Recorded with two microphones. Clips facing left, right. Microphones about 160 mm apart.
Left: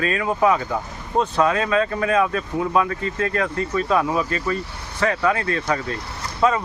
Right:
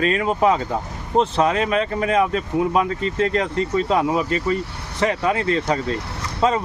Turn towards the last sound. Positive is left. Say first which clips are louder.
# even
turn(degrees=-25)  # may be behind; listen again after turning